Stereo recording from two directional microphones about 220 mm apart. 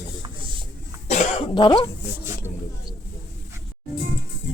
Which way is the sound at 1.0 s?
30° left (ahead or behind).